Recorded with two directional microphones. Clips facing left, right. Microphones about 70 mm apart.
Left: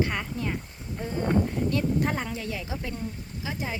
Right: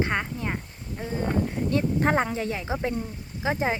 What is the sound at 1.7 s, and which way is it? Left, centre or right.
Speech, right.